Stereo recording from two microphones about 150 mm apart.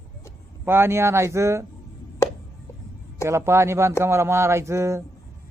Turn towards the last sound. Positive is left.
turn(degrees=-20)  # may be behind; listen again after turning